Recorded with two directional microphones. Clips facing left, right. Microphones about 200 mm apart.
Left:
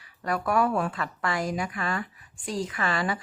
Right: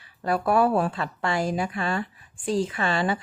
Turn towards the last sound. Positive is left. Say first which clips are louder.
# right 3 dB
turn(degrees=-25)  # may be behind; listen again after turning